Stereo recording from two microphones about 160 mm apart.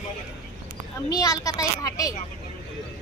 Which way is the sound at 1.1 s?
20° left (ahead or behind).